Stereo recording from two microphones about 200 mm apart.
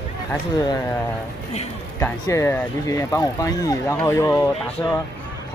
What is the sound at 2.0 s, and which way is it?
Speech, 15° left (ahead or behind).